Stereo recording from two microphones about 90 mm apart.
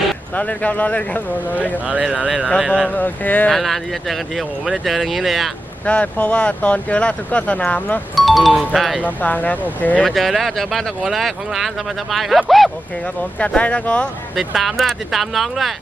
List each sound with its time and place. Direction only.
0.3 s speech: 15° left (ahead or behind)
1.9 s speech: 15° right (ahead or behind)
2.9 s speech: 20° left (ahead or behind)
3.5 s speech: centre (ahead or behind)
5.8 s speech: 15° left (ahead or behind)
8.1 s speech: centre (ahead or behind)
9.0 s speech: 20° left (ahead or behind)
10.1 s speech: centre (ahead or behind)
13.4 s speech: 15° left (ahead or behind)
14.3 s speech: centre (ahead or behind)